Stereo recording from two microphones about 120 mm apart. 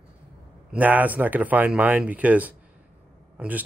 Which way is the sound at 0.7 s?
15° right (ahead or behind).